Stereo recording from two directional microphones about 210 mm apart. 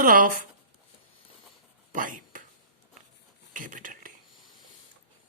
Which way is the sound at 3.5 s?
40° right (ahead or behind).